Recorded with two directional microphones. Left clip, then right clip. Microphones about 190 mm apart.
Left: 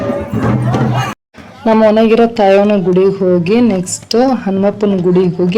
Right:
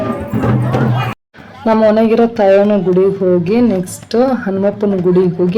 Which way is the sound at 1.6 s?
25° left (ahead or behind).